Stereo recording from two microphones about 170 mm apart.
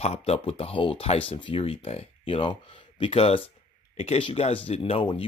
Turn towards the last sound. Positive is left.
turn(degrees=30)  # may be behind; listen again after turning